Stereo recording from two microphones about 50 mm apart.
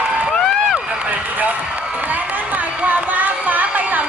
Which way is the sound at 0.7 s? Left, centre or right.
Right.